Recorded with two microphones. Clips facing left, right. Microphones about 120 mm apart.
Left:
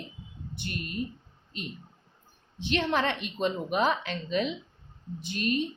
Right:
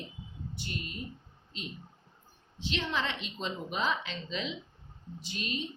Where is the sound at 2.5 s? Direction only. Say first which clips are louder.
Left 6 dB; 55° left (ahead or behind).